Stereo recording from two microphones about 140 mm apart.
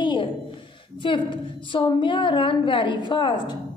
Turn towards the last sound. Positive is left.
turn(degrees=30)  # may be behind; listen again after turning